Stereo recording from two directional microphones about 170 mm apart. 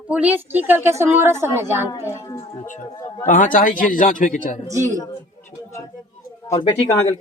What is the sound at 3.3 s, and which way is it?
A man's voice, 50° left (ahead or behind).